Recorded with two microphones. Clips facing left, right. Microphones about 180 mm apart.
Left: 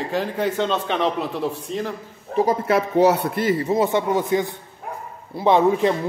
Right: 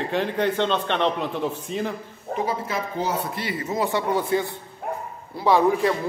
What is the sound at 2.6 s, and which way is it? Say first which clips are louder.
Speech: left 10 dB; 70° left (ahead or behind).